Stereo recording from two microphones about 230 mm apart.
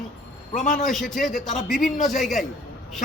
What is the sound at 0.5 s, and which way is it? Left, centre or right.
Speech, left.